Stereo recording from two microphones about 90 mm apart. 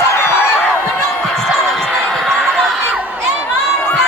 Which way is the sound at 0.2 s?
25° left (ahead or behind).